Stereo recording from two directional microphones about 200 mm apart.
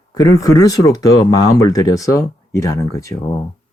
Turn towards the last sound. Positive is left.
turn(degrees=15)  # may be behind; listen again after turning